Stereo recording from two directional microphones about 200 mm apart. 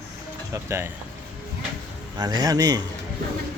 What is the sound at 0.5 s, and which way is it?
Speech, 15° right (ahead or behind).